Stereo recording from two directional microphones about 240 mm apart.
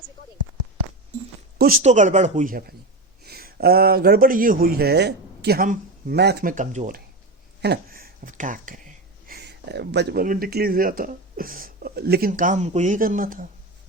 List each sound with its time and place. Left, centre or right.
1.5 s speech: right